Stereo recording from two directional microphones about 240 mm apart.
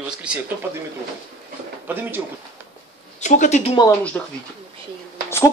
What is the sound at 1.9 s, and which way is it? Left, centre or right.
Speech, centre.